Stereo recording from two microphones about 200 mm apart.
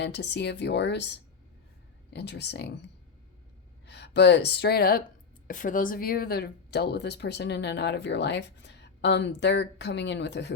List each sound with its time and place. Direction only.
0.0 s speech: 60° left (ahead or behind)
3.8 s speech: 60° left (ahead or behind)